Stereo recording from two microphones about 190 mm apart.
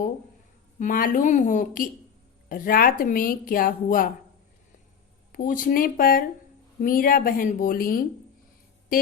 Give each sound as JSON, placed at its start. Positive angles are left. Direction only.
{"t": 0.8, "sound": "a woman's voice", "side_deg": 45}
{"t": 5.3, "sound": "a woman's voice", "side_deg": 45}